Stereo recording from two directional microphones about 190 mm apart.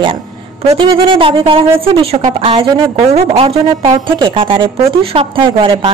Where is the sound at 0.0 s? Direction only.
30° right (ahead or behind).